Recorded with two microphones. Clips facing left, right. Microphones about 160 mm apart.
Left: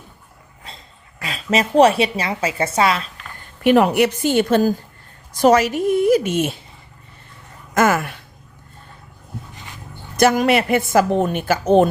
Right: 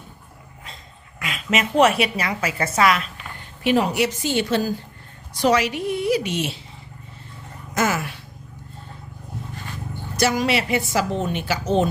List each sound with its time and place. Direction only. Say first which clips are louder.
1.2 s a woman's voice: left 4 dB; 35° left (ahead or behind)
3.6 s a woman's voice: left 6 dB; 55° left (ahead or behind)
7.7 s speech: left 6 dB; 55° left (ahead or behind)
10.2 s a woman's voice: left 6 dB; 55° left (ahead or behind)